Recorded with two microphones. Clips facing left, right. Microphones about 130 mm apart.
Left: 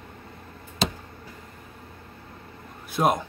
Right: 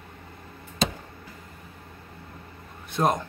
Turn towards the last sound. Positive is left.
turn(degrees=10)  # may be behind; listen again after turning